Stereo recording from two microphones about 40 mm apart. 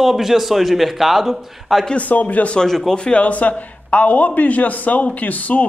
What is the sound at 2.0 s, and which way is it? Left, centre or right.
Speech, left.